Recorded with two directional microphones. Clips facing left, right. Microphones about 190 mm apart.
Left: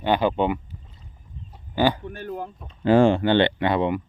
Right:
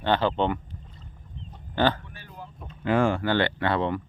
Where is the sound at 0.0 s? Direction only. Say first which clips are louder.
Left 3 dB; 15° left (ahead or behind).